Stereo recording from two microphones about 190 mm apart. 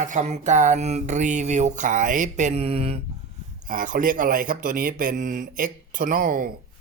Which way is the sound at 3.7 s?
45° right (ahead or behind).